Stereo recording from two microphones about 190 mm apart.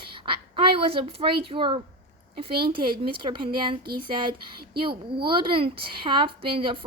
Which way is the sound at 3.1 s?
25° right (ahead or behind).